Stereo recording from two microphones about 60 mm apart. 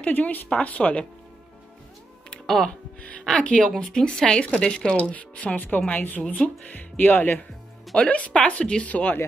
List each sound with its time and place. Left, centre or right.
0.0 s speech: left
2.4 s a woman's voice: centre; by 6.2 s left
6.2 s a woman's voice: centre
6.7 s speech: left
7.9 s speech: left